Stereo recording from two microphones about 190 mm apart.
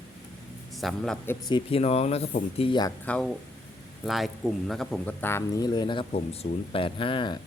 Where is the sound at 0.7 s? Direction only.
Centre (ahead or behind).